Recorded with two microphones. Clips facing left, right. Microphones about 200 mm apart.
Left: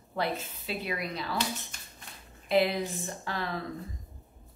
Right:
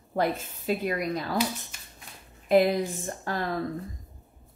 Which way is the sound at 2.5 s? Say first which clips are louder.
Right 5 dB; 45° right (ahead or behind).